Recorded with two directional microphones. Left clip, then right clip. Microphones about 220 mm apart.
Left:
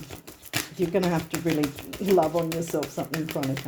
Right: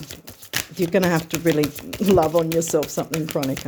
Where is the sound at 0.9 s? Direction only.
50° right (ahead or behind).